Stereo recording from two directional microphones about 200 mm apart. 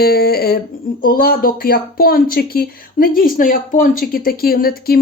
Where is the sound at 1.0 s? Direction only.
50° left (ahead or behind).